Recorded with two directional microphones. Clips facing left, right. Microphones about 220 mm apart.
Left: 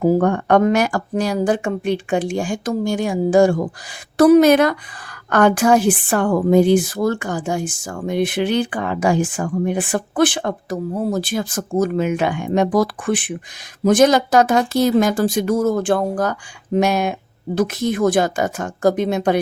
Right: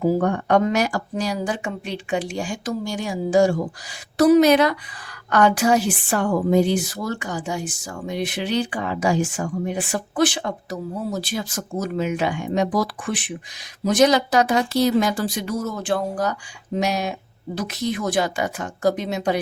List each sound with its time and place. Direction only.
0.0 s a woman's voice: 50° left (ahead or behind)